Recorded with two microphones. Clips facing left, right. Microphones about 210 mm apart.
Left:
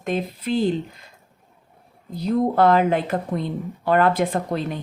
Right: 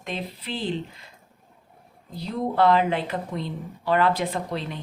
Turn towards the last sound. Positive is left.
turn(degrees=45)  # may be behind; listen again after turning